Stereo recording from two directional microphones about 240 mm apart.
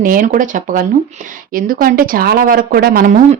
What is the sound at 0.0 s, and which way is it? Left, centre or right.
Speech, right.